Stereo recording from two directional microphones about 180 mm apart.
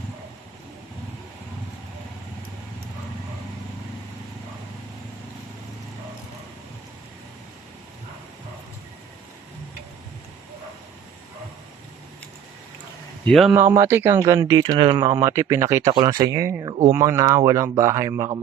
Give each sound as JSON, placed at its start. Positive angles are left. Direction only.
{"t": 13.2, "sound": "speech", "side_deg": 0}
{"t": 13.6, "sound": "speech", "side_deg": -15}